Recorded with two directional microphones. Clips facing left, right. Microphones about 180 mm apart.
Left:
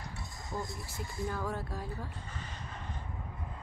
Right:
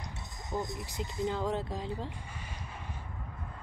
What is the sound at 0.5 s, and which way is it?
Speech, 20° right (ahead or behind).